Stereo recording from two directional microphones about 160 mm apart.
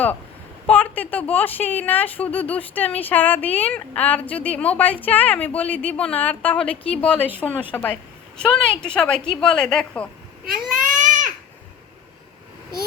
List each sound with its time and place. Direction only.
0.7 s a woman's voice: 10° left (ahead or behind)
10.4 s baby cry: 55° right (ahead or behind)